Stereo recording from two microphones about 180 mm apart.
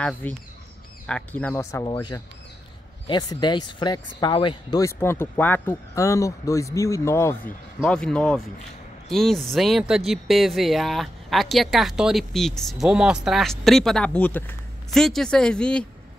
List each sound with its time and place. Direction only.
0.2 s speech: 10° left (ahead or behind)